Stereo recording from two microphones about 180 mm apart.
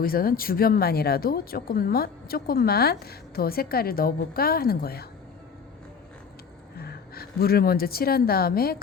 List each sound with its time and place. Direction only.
0.0 s speech: 55° left (ahead or behind)
6.7 s a woman's voice: 60° left (ahead or behind)